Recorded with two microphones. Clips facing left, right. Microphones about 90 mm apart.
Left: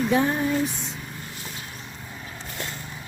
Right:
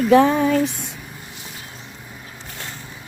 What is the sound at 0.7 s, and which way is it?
Vehicle, 15° right (ahead or behind).